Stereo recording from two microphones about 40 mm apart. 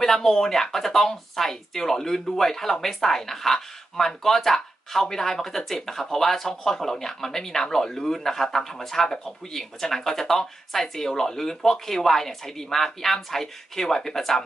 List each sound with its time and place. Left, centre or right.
0.0 s speech: centre